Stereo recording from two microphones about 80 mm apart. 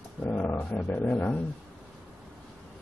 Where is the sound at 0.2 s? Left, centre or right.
Left.